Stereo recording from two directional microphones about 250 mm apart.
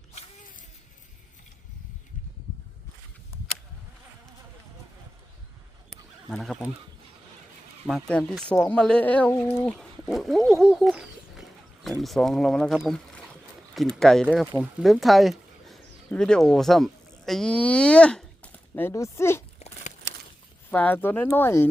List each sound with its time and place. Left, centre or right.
0.1 s vehicle: left
6.3 s speech: centre
7.9 s speech: centre
19.5 s a sound: left
20.7 s speech: centre